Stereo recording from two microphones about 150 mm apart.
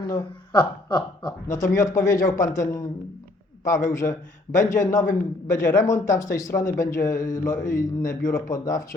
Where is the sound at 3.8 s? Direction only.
20° left (ahead or behind).